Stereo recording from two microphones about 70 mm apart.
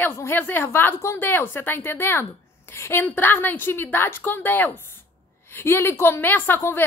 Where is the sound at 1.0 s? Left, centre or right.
Left.